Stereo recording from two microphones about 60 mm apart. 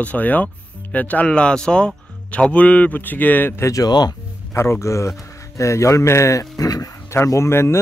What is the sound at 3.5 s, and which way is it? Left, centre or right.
Speech, left.